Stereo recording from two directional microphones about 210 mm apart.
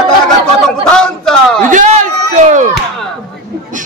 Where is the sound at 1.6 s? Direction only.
35° right (ahead or behind).